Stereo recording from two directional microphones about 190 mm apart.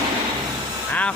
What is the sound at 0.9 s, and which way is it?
Speech, 5° left (ahead or behind).